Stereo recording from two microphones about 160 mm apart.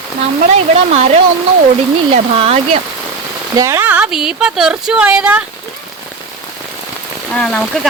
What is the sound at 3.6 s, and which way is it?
Speech, 15° right (ahead or behind).